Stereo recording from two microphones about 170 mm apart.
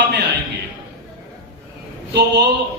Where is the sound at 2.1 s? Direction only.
90° right.